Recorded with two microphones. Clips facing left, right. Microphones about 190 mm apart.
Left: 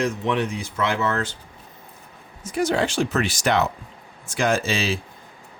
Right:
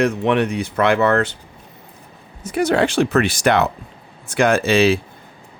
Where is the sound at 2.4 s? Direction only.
65° right (ahead or behind).